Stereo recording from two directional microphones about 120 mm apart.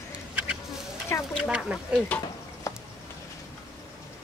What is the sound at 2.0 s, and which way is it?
Stir, 15° left (ahead or behind).